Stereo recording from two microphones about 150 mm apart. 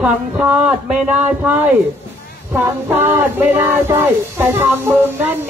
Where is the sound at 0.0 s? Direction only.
5° right (ahead or behind).